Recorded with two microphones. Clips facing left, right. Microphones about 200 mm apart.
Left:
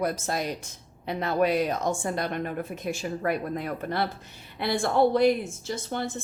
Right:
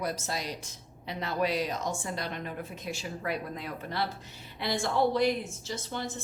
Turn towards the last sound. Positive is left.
turn(degrees=55)  # may be behind; listen again after turning